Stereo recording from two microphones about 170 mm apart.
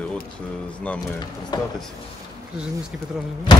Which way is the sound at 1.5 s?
25° left (ahead or behind).